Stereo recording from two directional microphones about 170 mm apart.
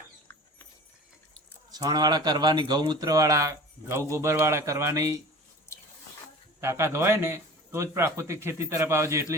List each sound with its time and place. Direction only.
1.7 s a man's voice: 25° right (ahead or behind)
6.6 s a man's voice: 15° right (ahead or behind)